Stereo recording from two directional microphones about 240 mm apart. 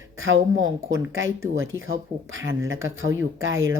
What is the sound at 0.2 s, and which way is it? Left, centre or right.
Speech, right.